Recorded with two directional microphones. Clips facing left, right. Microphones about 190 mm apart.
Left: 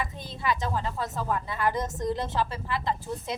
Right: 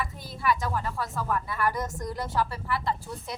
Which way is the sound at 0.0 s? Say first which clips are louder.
Right 1 dB; 20° left (ahead or behind).